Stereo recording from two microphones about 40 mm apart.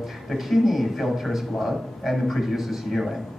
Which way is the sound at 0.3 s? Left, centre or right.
Centre.